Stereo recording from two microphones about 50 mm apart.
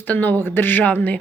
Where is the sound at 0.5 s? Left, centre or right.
Left.